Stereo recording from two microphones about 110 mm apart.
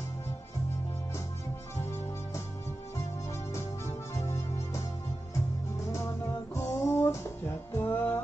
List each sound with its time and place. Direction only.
3.5 s music: 25° left (ahead or behind)
5.9 s music: 25° left (ahead or behind)